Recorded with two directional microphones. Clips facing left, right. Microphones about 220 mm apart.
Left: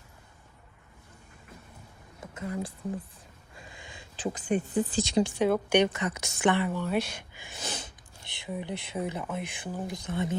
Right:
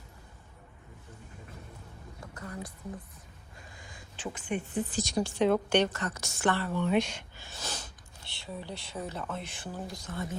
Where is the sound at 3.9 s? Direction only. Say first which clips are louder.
Left 6 dB; 30° left (ahead or behind).